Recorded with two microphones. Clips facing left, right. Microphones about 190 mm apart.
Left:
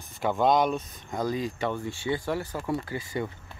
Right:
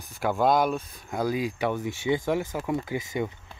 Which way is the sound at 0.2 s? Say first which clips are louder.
Even; 5° right (ahead or behind).